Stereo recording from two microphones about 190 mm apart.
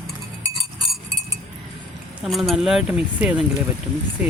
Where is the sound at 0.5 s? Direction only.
Centre (ahead or behind).